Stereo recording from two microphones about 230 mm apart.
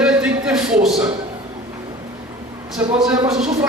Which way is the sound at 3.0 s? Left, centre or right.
Centre.